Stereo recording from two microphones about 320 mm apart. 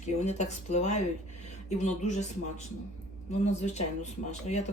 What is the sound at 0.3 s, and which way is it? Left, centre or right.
Speech, left.